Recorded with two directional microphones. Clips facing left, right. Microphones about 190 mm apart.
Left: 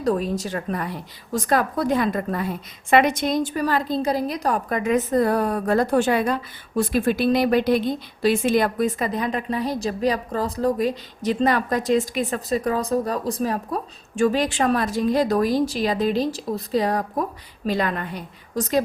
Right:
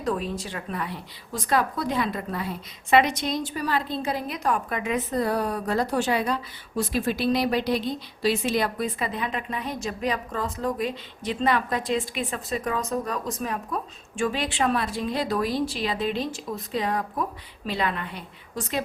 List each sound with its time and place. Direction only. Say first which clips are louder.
0.0 s a woman's voice: left 5 dB; 40° left (ahead or behind)